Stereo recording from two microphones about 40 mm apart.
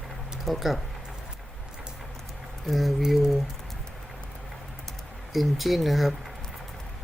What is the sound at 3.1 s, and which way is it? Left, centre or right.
Speech, centre.